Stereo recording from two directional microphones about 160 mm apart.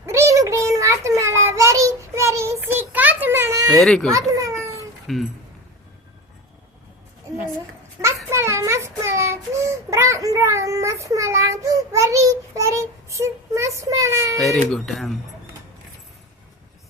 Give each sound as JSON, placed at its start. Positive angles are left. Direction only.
{"t": 0.0, "sound": "child singing", "side_deg": -15}
{"t": 3.8, "sound": "speech", "side_deg": 0}
{"t": 4.3, "sound": "a sound", "side_deg": -20}
{"t": 5.1, "sound": "speech", "side_deg": 0}
{"t": 8.0, "sound": "child singing", "side_deg": -15}
{"t": 14.3, "sound": "speech", "side_deg": 0}